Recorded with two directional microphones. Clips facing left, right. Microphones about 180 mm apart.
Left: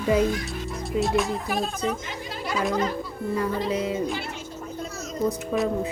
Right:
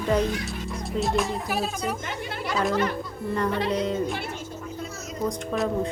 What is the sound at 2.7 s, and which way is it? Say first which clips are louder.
Speech: even; 65° right (ahead or behind).